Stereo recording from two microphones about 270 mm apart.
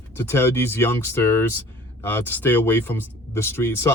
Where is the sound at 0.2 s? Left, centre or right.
Centre.